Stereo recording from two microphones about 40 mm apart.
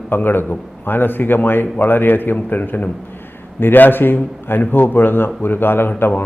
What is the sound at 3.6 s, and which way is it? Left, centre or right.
A man's voice, left.